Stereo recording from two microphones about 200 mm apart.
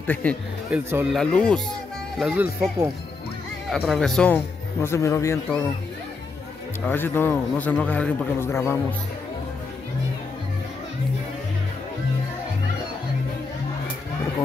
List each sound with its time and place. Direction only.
0.0 s a man's voice: 10° left (ahead or behind)
0.7 s speech: 10° right (ahead or behind)
1.1 s speech: 5° left (ahead or behind)
3.7 s speech: centre (ahead or behind)
4.8 s a man's voice: 15° left (ahead or behind)
6.9 s a man's voice: 10° left (ahead or behind)